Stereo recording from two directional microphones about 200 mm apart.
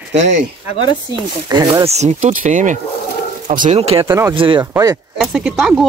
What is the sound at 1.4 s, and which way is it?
Speech, 20° right (ahead or behind).